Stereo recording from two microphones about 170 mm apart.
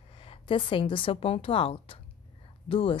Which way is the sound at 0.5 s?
30° left (ahead or behind).